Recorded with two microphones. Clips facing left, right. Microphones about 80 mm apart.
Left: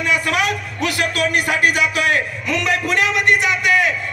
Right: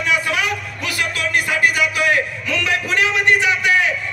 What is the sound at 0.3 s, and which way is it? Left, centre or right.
Music, left.